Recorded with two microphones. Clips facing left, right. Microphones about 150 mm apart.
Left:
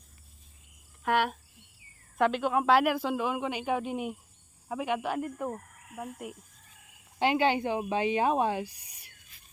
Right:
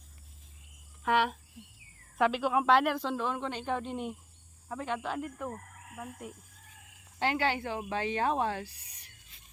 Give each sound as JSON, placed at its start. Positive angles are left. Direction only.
{"t": 1.0, "sound": "speech", "side_deg": 0}